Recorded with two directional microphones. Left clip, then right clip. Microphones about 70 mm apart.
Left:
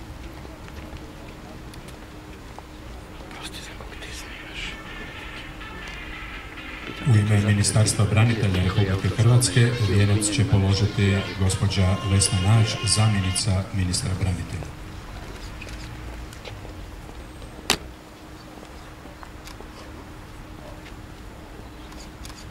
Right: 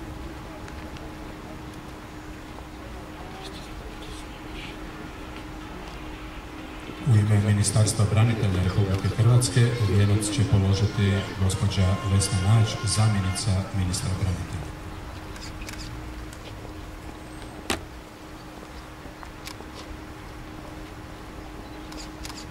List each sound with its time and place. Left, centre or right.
7.1 s speech: left